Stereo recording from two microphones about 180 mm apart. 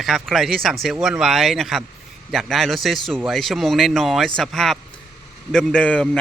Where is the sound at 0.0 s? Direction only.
Centre (ahead or behind).